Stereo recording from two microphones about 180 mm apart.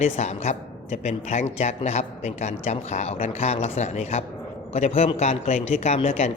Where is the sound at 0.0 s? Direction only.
40° left (ahead or behind).